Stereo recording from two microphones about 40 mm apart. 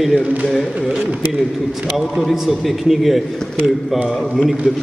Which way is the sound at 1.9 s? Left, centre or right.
Centre.